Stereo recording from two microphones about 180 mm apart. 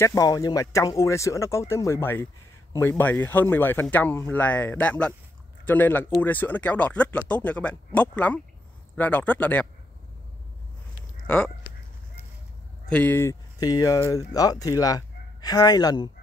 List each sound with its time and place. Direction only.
0.0 s speech: 20° left (ahead or behind)
11.2 s speech: 5° left (ahead or behind)
12.9 s speech: 10° left (ahead or behind)